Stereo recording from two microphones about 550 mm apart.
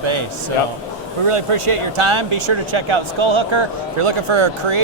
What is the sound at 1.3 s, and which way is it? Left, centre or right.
Speech, right.